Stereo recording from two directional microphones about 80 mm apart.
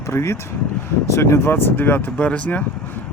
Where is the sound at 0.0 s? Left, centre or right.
Left.